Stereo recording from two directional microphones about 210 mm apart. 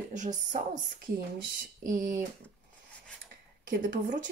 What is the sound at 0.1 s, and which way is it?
Speech, 35° right (ahead or behind).